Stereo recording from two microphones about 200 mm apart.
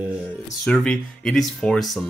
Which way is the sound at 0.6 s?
5° left (ahead or behind).